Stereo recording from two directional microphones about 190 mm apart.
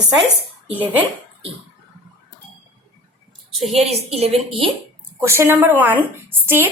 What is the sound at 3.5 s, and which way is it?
A woman's voice, 35° right (ahead or behind).